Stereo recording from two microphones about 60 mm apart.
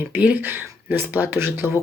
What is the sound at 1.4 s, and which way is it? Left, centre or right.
Speech, right.